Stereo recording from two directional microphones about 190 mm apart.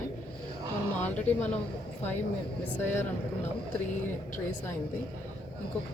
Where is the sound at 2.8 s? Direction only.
10° left (ahead or behind).